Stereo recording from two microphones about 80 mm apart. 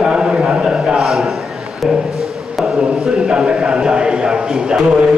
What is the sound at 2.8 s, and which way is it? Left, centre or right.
A man's voice, centre.